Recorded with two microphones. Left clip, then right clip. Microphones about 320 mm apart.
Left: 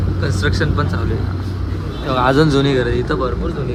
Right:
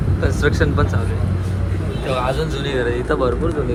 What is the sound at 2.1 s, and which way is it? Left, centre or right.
Speech, left.